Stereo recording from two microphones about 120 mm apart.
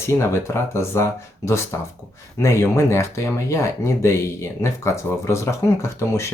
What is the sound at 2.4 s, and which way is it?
Speech, 25° left (ahead or behind).